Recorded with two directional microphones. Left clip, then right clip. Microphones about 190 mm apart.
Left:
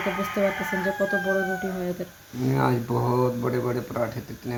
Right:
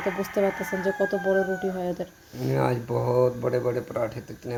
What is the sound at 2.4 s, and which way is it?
Speech, 30° right (ahead or behind).